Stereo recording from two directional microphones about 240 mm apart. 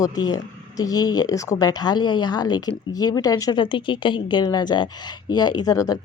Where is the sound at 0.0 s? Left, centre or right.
Centre.